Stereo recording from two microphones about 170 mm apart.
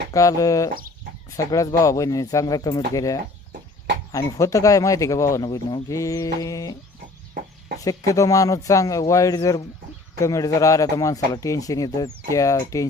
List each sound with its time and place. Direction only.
0.1 s speech: 20° left (ahead or behind)
7.9 s speech: 20° left (ahead or behind)